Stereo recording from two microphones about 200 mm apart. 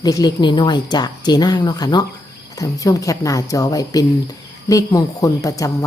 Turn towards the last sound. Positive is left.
turn(degrees=15)  # may be behind; listen again after turning